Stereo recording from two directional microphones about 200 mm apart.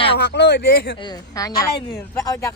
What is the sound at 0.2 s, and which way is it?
Speech, 55° left (ahead or behind).